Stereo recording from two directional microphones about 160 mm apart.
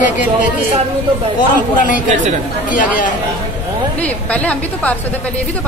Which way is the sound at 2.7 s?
55° left (ahead or behind).